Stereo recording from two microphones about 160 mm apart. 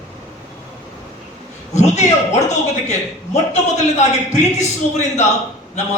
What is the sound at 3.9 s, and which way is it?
A man's voice, 45° left (ahead or behind).